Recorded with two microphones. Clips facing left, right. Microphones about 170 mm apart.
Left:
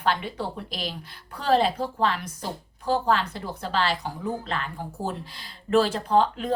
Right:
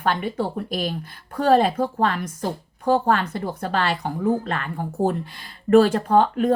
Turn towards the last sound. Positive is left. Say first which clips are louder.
# right 4 dB
turn(degrees=-50)  # may be behind; listen again after turning